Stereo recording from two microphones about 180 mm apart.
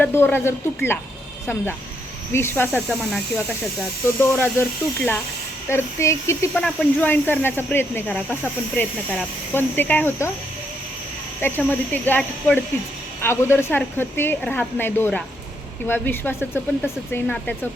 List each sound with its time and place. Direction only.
0.0 s speech: 10° left (ahead or behind)
2.3 s speech: 15° left (ahead or behind)
11.3 s speech: 10° left (ahead or behind)